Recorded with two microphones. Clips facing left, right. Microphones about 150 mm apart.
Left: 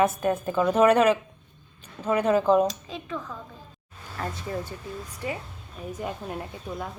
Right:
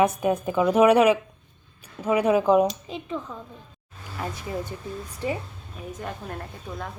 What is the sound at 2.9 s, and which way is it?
Speech, 25° right (ahead or behind).